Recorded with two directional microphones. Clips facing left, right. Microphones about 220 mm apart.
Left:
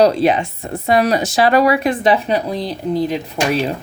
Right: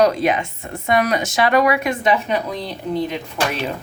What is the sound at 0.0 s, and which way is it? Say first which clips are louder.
Speech: left 3 dB; 30° left (ahead or behind).